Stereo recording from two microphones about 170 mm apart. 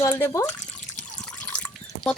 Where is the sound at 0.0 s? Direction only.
15° left (ahead or behind).